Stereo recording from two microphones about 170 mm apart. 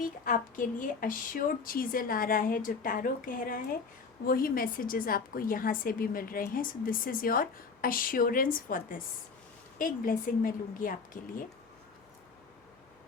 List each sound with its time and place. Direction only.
0.0 s a woman's voice: 55° left (ahead or behind)